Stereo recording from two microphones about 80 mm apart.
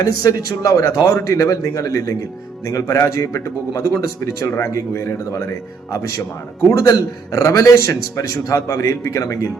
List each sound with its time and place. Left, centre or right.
0.0 s a man's voice: left